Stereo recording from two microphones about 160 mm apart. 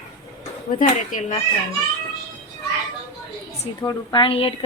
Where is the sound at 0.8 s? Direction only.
55° left (ahead or behind).